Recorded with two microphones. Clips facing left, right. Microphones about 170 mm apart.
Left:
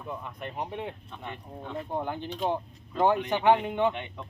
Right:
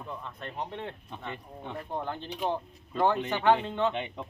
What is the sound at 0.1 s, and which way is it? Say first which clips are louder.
Speech: left 5 dB; 15° left (ahead or behind).